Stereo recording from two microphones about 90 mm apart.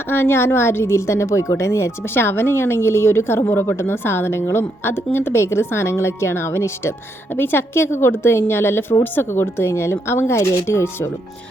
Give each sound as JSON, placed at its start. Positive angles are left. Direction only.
{"t": 0.1, "sound": "a woman's voice", "side_deg": 25}